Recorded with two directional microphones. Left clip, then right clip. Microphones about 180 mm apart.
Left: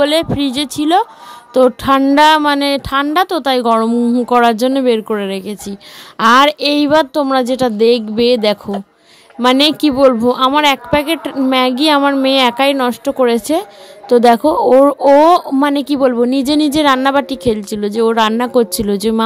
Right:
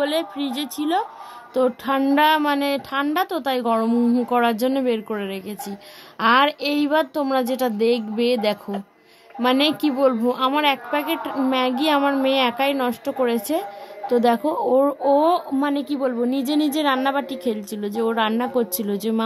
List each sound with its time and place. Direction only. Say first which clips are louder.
0.0 s speech: left 10 dB; 35° left (ahead or behind); by 4.2 s 20° left (ahead or behind)
4.3 s speech: left 11 dB; 30° left (ahead or behind)